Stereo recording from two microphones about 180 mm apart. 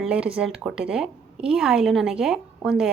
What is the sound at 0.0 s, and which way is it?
A woman's voice, 5° right (ahead or behind).